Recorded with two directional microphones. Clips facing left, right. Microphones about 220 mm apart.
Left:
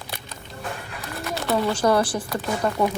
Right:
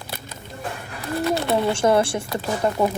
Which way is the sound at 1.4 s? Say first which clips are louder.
Left 2 dB; 25° right (ahead or behind).